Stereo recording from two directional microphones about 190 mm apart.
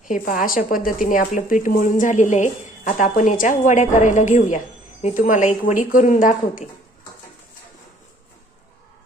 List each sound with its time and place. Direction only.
0.0 s speech: 45° left (ahead or behind)